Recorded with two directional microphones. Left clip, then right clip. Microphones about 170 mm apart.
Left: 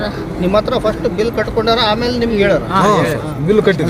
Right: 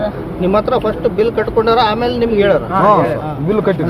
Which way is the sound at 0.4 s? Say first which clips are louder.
Even; 45° right (ahead or behind).